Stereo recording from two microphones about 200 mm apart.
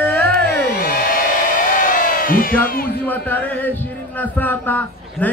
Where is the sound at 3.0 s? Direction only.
10° left (ahead or behind).